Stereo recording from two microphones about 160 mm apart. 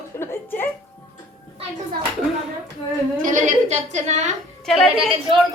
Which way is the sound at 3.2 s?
55° right (ahead or behind).